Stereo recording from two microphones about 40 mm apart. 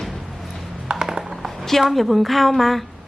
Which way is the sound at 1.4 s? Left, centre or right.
Centre.